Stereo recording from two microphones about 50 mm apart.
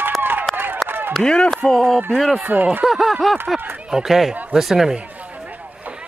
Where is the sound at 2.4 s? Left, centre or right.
Right.